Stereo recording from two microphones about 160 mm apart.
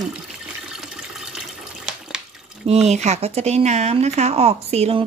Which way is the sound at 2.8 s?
45° right (ahead or behind).